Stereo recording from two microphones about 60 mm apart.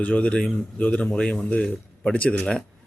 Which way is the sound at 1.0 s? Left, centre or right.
Centre.